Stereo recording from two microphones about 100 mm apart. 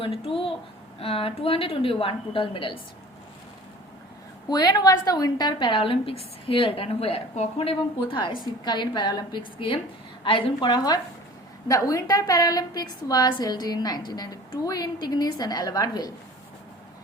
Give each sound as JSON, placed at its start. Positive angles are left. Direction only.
{"t": 0.0, "sound": "a woman's voice", "side_deg": 65}
{"t": 4.4, "sound": "a woman's voice", "side_deg": 40}